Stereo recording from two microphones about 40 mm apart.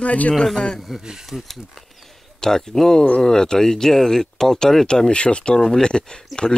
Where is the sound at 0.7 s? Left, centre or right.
Centre.